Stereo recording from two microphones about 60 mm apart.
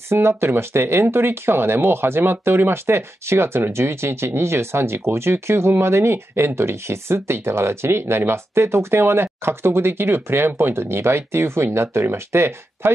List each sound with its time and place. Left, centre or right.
0.1 s speech: right